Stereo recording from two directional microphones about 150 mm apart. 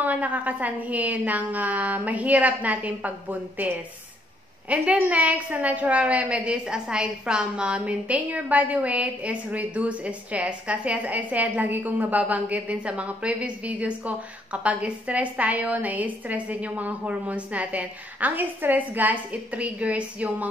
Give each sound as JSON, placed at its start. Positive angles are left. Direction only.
{"t": 0.0, "sound": "a woman's voice", "side_deg": -10}